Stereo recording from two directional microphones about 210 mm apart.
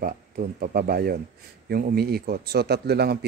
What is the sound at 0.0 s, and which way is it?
Speech, 40° right (ahead or behind).